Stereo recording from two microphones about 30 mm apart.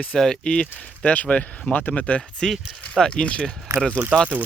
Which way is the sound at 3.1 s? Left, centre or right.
Left.